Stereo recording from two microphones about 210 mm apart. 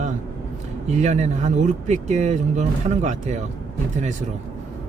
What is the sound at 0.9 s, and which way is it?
Speech, 30° right (ahead or behind).